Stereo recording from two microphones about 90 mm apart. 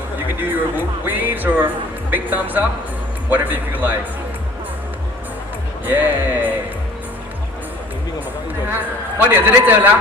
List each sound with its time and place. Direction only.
0.3 s a man's voice: 20° right (ahead or behind)
5.8 s a man's voice: 20° right (ahead or behind)
8.6 s a man's voice: 25° right (ahead or behind)